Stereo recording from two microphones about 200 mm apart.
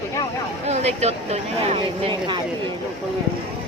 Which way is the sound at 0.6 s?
35° right (ahead or behind).